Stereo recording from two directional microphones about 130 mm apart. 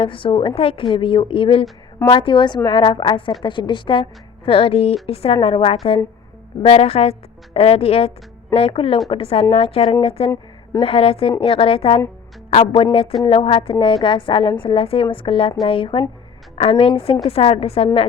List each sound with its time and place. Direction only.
0.0 s a woman's voice: 40° left (ahead or behind)